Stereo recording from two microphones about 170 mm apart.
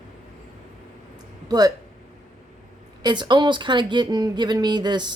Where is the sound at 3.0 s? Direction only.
25° right (ahead or behind).